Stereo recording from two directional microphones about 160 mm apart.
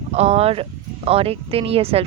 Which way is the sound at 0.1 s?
40° right (ahead or behind).